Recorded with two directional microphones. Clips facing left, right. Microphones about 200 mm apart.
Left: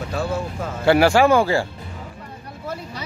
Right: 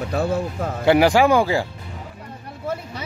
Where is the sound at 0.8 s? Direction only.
15° right (ahead or behind).